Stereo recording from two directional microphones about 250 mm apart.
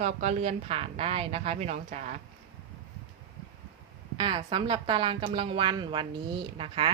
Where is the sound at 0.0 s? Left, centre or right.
Right.